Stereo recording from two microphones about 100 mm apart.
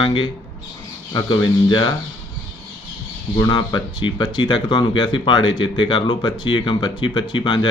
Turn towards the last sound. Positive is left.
turn(degrees=50)  # may be behind; listen again after turning